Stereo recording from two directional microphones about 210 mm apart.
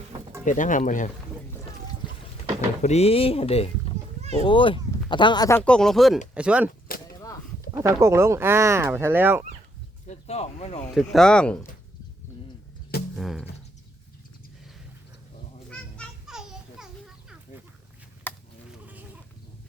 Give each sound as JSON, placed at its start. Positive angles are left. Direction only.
{"t": 0.4, "sound": "speech", "side_deg": 40}
{"t": 2.0, "sound": "boat", "side_deg": 20}
{"t": 2.8, "sound": "speech", "side_deg": 30}
{"t": 6.9, "sound": "a sound", "side_deg": 45}
{"t": 7.7, "sound": "speech", "side_deg": -15}
{"t": 10.1, "sound": "speech", "side_deg": 30}
{"t": 10.9, "sound": "speech", "side_deg": 0}
{"t": 13.1, "sound": "a sound", "side_deg": 0}
{"t": 15.7, "sound": "music", "side_deg": 0}